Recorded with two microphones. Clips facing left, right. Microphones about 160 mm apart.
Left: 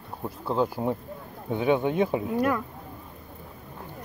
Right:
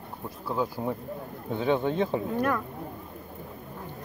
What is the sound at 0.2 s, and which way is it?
Speech, 25° left (ahead or behind).